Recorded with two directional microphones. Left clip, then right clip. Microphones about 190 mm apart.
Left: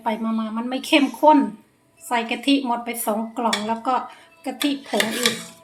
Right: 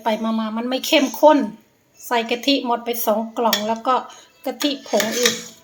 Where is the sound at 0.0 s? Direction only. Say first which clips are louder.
Right 3 dB; 20° right (ahead or behind).